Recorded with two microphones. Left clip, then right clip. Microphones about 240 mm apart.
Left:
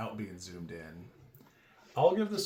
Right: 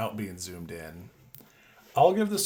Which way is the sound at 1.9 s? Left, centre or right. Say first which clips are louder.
Right 5 dB; right.